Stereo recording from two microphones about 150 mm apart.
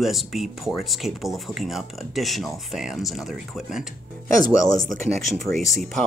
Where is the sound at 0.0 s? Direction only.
Centre (ahead or behind).